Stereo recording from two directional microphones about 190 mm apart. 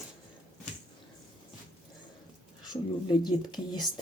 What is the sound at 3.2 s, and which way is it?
Speech, 20° left (ahead or behind).